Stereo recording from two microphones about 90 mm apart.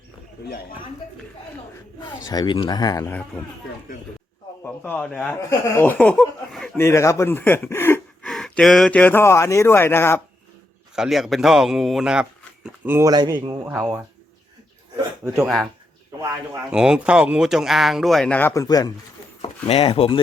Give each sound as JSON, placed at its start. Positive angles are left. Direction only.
{"t": 2.3, "sound": "speech", "side_deg": 55}
{"t": 4.6, "sound": "a man's voice", "side_deg": 25}
{"t": 6.7, "sound": "speech", "side_deg": 30}
{"t": 7.3, "sound": "speech", "side_deg": 25}
{"t": 8.2, "sound": "a sound", "side_deg": 10}
{"t": 8.9, "sound": "speech", "side_deg": 20}
{"t": 10.9, "sound": "speech", "side_deg": -5}
{"t": 13.1, "sound": "speech", "side_deg": -50}
{"t": 13.5, "sound": "speech", "side_deg": -30}
{"t": 16.7, "sound": "speech", "side_deg": -10}
{"t": 18.3, "sound": "speech", "side_deg": 20}
{"t": 18.5, "sound": "speech", "side_deg": 40}
{"t": 19.7, "sound": "speech", "side_deg": 90}